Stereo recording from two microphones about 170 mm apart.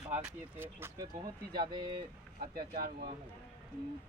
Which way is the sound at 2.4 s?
60° right (ahead or behind).